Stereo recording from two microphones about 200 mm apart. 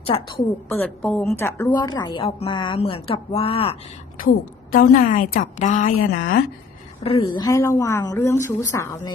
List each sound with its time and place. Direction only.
0.0 s a woman's voice: 25° left (ahead or behind)
0.7 s a woman's voice: 10° left (ahead or behind); by 3.8 s 30° left (ahead or behind)
4.7 s a woman's voice: 45° left (ahead or behind)
7.0 s speech: 25° left (ahead or behind)